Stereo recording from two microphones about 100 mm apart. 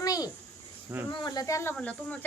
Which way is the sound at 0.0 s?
40° left (ahead or behind).